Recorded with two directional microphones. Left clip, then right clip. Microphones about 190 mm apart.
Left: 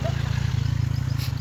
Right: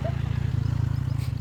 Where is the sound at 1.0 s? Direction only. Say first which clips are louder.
Left 4 dB; 15° right (ahead or behind).